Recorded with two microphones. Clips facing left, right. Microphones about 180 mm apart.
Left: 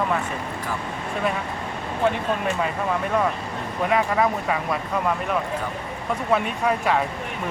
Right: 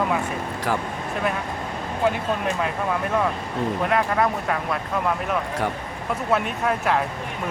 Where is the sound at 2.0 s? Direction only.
Centre (ahead or behind).